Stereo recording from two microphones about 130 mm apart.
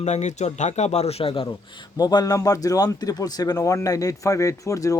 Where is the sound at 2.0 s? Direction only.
30° left (ahead or behind).